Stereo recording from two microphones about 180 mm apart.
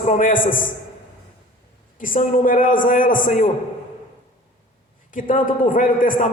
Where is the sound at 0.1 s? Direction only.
50° left (ahead or behind).